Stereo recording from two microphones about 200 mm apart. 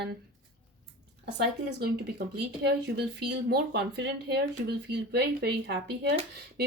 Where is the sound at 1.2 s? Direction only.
55° right (ahead or behind).